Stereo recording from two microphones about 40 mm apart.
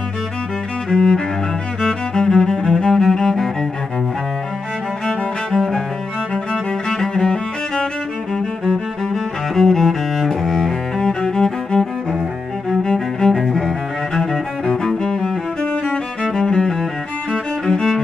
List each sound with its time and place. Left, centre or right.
0.8 s cello: centre
1.8 s music: centre
6.3 s music: centre
11.0 s music: centre
12.8 s cello: centre
15.6 s music: left